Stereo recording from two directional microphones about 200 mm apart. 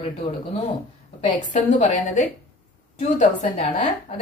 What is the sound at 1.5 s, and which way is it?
Speech, 40° left (ahead or behind).